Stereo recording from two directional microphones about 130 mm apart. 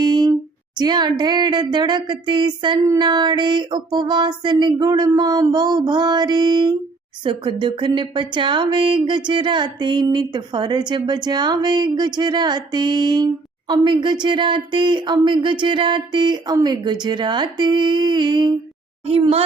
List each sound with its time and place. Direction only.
0.0 s a sound: 30° right (ahead or behind)
0.8 s a woman's voice: 35° right (ahead or behind)
19.0 s a woman's voice: 45° right (ahead or behind)